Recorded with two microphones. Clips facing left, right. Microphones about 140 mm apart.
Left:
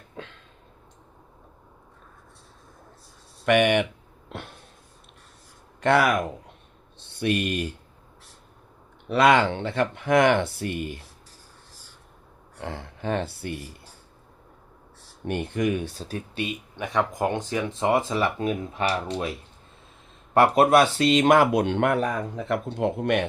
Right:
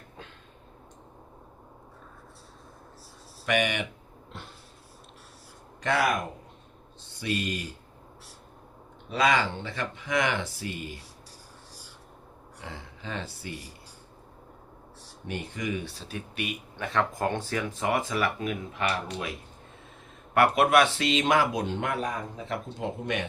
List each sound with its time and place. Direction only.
0.2 s a sound: 90° left
3.4 s speech: 55° left (ahead or behind)
4.3 s a sound: 65° left (ahead or behind)
5.8 s speech: 65° left (ahead or behind)
9.0 s speech: 60° left (ahead or behind)
12.6 s speech: 55° left (ahead or behind)
15.2 s speech: 55° left (ahead or behind)